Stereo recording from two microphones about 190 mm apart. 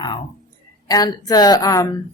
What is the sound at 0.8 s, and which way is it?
Speech, 20° left (ahead or behind).